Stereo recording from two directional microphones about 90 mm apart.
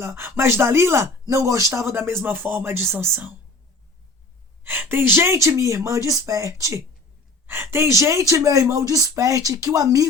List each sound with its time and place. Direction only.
0.0 s speech: 25° right (ahead or behind)
4.6 s speech: 25° right (ahead or behind); by 10.1 s 40° right (ahead or behind)